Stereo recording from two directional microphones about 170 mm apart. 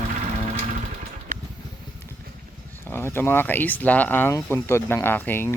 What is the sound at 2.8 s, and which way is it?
Speech, 15° left (ahead or behind).